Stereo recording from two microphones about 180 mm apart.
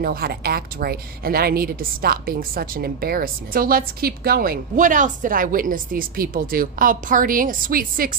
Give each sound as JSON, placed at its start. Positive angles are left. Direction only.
{"t": 0.0, "sound": "a woman's voice", "side_deg": -55}